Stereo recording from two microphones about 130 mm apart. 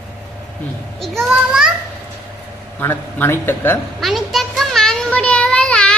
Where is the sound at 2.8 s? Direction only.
15° left (ahead or behind).